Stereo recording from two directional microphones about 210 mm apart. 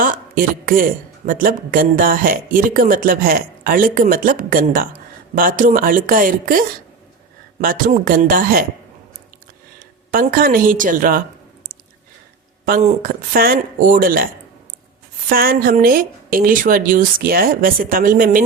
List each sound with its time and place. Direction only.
0.0 s speech: 40° right (ahead or behind)
10.1 s speech: 45° right (ahead or behind)
12.6 s speech: 45° right (ahead or behind)
15.3 s speech: 45° right (ahead or behind)